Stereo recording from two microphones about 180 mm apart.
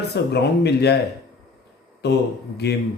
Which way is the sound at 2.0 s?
70° left (ahead or behind).